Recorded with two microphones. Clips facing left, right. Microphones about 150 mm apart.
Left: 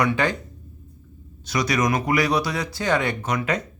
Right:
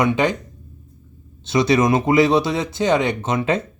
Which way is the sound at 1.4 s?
25° right (ahead or behind).